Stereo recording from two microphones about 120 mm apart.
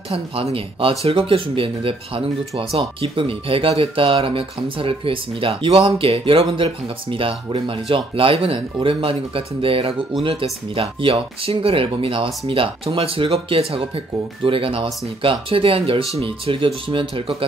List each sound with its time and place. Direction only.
0.1 s speech: 50° right (ahead or behind)